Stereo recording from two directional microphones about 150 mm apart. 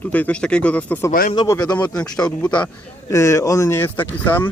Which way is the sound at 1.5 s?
25° left (ahead or behind).